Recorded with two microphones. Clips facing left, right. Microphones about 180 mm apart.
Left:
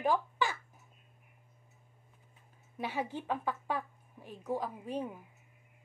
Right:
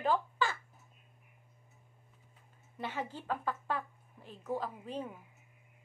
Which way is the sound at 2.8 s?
10° left (ahead or behind).